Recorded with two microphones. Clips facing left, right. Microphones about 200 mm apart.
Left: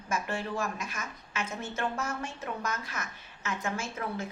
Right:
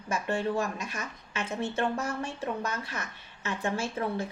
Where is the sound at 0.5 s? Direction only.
35° right (ahead or behind).